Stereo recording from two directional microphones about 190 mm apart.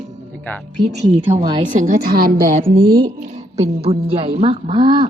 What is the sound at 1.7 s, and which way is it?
A woman's voice, 40° right (ahead or behind).